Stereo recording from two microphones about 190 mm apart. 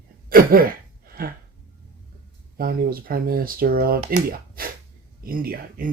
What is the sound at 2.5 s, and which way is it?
Speech, 50° right (ahead or behind).